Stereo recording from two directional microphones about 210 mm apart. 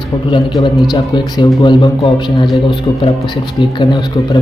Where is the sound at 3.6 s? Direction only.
25° left (ahead or behind).